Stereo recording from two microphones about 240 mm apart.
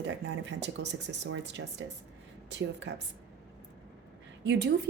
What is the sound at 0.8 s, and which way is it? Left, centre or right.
Speech, right.